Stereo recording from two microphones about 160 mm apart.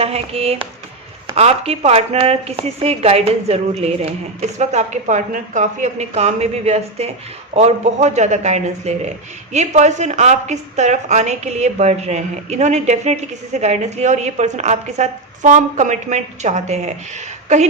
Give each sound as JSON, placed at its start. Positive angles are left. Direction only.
{"t": 0.0, "sound": "speech", "side_deg": -40}